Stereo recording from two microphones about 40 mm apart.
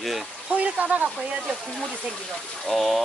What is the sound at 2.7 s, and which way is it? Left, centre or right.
Speech, centre.